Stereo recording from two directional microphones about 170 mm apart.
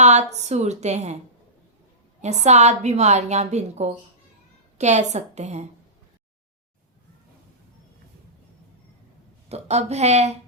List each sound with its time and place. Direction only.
0.0 s a woman's voice: 40° right (ahead or behind)
2.2 s a woman's voice: 40° right (ahead or behind)
9.5 s a woman's voice: 40° right (ahead or behind)